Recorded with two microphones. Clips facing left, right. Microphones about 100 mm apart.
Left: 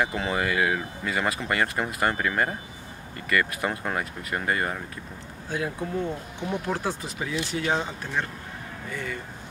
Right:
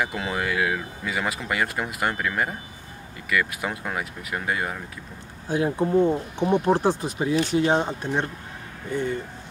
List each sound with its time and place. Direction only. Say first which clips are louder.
0.0 s speech: left 1 dB; centre (ahead or behind)
5.5 s speech: right 8 dB; 30° right (ahead or behind)